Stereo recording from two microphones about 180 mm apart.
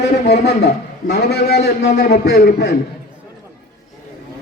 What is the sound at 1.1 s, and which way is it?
A man's voice, 65° left (ahead or behind).